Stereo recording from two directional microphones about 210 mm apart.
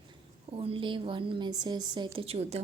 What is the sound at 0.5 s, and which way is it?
A woman's voice, 25° right (ahead or behind).